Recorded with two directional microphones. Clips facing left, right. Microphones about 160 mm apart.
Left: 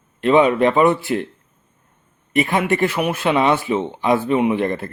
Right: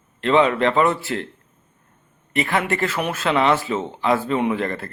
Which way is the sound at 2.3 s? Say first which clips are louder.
Left 4 dB; 20° left (ahead or behind).